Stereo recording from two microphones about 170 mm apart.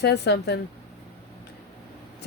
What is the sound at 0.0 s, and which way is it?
Speech, 80° left.